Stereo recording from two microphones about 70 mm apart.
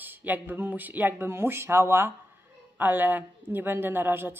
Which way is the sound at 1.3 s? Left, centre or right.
Right.